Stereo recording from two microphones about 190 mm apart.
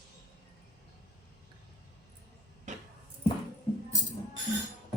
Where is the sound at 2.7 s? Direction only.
40° right (ahead or behind).